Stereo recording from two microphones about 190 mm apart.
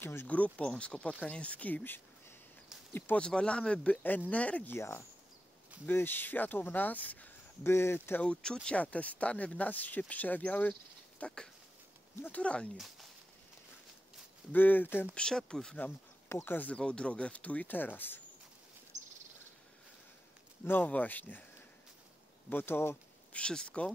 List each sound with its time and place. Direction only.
0.0 s speech: 10° left (ahead or behind)
14.5 s speech: 10° left (ahead or behind)
18.9 s a sound: 40° right (ahead or behind)
20.6 s speech: 10° left (ahead or behind)
22.5 s speech: 10° left (ahead or behind)